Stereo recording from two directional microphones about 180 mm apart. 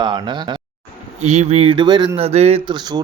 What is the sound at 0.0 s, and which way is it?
Speech, 25° right (ahead or behind).